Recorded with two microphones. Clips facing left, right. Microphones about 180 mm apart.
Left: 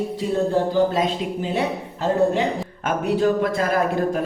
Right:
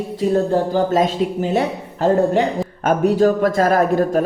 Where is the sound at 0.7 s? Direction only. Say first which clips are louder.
Right 3 dB; 45° right (ahead or behind).